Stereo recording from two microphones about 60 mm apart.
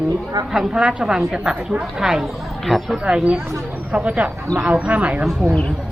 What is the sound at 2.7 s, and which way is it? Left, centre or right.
Speech, centre.